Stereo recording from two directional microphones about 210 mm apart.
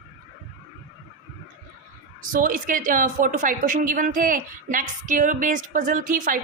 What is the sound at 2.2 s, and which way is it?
A woman's voice, 40° right (ahead or behind).